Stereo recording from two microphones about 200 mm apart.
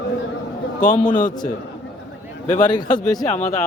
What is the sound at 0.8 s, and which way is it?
Speech, 40° left (ahead or behind).